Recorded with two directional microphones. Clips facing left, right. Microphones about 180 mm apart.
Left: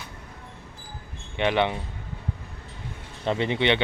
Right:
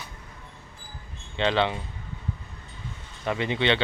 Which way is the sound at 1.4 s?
15° left (ahead or behind).